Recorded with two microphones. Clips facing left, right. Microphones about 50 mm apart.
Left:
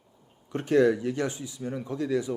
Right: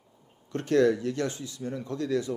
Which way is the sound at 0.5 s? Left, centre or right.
Centre.